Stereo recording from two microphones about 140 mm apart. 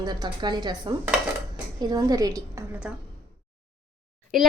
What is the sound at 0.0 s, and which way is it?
Speech, 30° right (ahead or behind).